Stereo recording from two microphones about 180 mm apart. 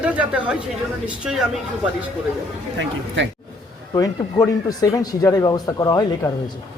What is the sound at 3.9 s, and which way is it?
Speech, 20° left (ahead or behind).